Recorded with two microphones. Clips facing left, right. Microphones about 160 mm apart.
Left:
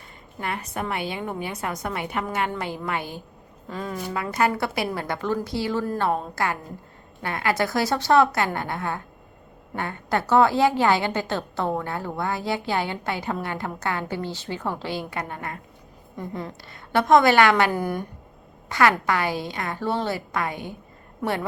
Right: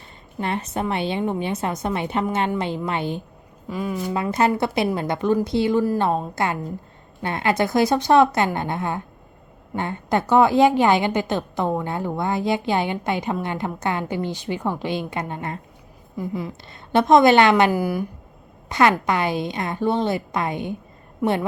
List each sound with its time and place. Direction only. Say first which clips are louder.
0.3 s a woman's voice: right 5 dB; 25° right (ahead or behind)
3.7 s speech: right 5 dB; 10° right (ahead or behind)
4.1 s a woman's voice: right 3 dB; 25° right (ahead or behind)
5.8 s speech: right 5 dB; 10° right (ahead or behind)
6.1 s a woman's voice: right 2 dB; 20° right (ahead or behind)
16.1 s a woman's voice: right 4 dB; 5° right (ahead or behind)
16.9 s a woman's voice: right 3 dB; 20° right (ahead or behind)
17.7 s speech: right 4 dB; 5° right (ahead or behind)
18.7 s a woman's voice: right 2 dB; 20° right (ahead or behind)